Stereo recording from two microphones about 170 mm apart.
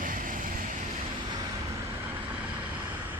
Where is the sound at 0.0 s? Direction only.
55° right (ahead or behind).